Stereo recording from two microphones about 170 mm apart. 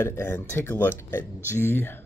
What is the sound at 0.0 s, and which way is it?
Speech, 15° left (ahead or behind).